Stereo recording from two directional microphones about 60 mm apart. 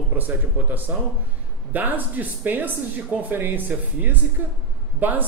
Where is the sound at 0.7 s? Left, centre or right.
Right.